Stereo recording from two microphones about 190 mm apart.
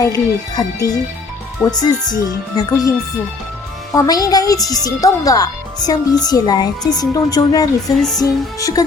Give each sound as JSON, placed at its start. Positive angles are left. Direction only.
{"t": 0.0, "sound": "speech", "side_deg": 20}
{"t": 3.9, "sound": "speech", "side_deg": 20}